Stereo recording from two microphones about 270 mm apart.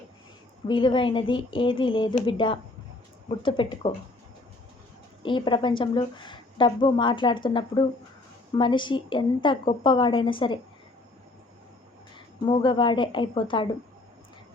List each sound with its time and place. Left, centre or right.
0.7 s a woman's voice: centre
5.2 s a woman's voice: centre
12.5 s a woman's voice: centre